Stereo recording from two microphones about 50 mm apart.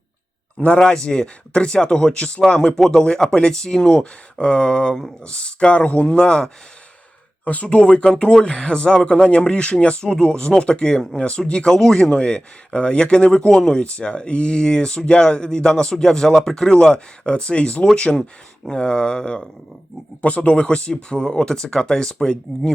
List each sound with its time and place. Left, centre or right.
0.8 s speech: centre
7.4 s speech: left
20.2 s speech: left